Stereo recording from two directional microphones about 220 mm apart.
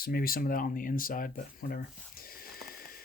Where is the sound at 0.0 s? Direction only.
40° left (ahead or behind).